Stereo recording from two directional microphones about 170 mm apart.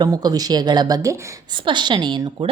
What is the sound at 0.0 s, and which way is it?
A woman's voice, 25° right (ahead or behind).